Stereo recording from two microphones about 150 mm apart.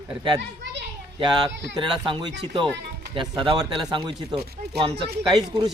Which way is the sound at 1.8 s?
35° right (ahead or behind).